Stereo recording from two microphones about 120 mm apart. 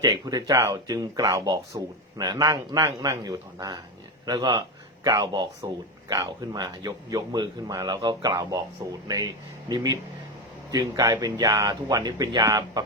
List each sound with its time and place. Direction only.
0.0 s speech: 35° right (ahead or behind)